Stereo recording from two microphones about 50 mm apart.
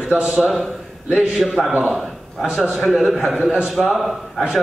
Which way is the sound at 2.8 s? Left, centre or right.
Centre.